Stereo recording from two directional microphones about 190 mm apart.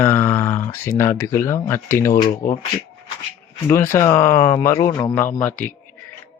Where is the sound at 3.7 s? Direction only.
15° left (ahead or behind).